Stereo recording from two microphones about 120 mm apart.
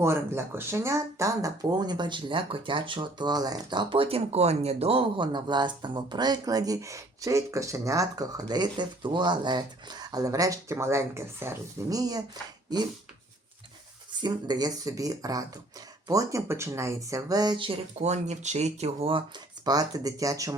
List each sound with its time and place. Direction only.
0.0 s speech: 20° right (ahead or behind)
14.2 s speech: 35° right (ahead or behind)
18.0 s speech: 70° right (ahead or behind); by 19.2 s 55° right (ahead or behind)
19.6 s speech: 30° right (ahead or behind)